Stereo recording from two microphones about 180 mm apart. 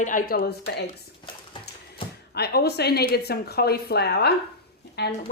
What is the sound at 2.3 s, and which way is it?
A woman's voice, 65° left (ahead or behind).